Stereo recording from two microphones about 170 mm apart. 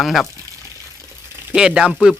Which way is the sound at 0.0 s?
Centre (ahead or behind).